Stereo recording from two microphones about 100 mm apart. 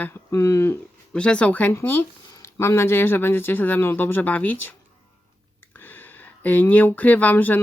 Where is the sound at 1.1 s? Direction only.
10° left (ahead or behind).